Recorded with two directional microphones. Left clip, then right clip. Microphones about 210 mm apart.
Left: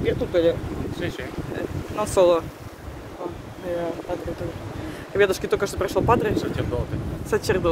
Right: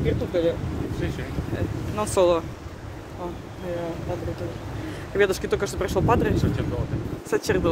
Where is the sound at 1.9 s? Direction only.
Centre (ahead or behind).